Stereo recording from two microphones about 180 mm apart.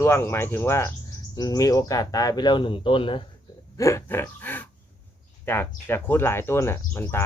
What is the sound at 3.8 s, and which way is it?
Speech, 15° left (ahead or behind).